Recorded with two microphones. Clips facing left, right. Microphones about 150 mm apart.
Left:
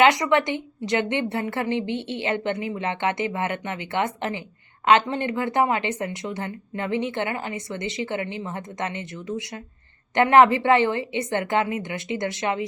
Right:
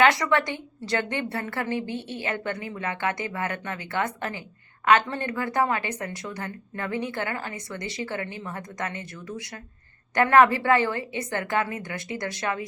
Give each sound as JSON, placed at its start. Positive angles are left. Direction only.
{"t": 0.0, "sound": "speech", "side_deg": 20}